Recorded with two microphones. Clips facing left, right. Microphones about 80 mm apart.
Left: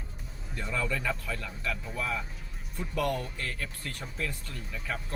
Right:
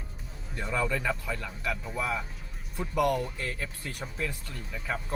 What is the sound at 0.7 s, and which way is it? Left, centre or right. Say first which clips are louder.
Speech: right 3 dB; centre.